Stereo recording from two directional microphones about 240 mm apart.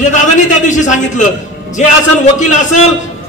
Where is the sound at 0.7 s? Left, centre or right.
Left.